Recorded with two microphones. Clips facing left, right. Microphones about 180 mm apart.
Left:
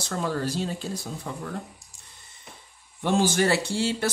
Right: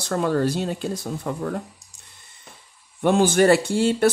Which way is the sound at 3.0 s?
55° right (ahead or behind).